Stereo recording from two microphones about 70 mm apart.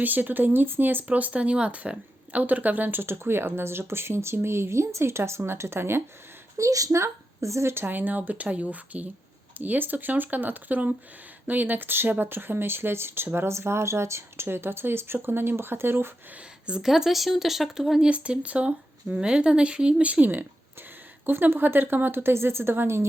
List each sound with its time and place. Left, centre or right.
0.0 s speech: right
6.6 s speech: right
16.6 s speech: centre
18.1 s speech: centre; by 23.0 s right